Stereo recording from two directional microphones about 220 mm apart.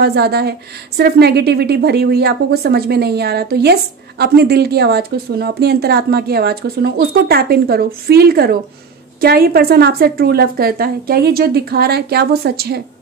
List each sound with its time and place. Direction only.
0.0 s speech: 45° right (ahead or behind)